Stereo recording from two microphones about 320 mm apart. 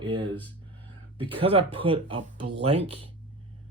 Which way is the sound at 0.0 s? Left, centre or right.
Centre.